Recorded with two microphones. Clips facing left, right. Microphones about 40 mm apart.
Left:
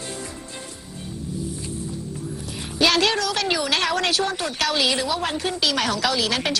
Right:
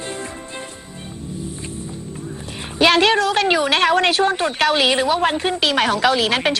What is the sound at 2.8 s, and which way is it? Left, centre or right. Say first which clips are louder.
A woman's voice: right 5 dB; right.